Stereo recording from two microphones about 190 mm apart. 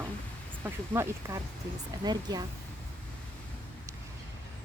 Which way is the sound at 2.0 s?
20° right (ahead or behind).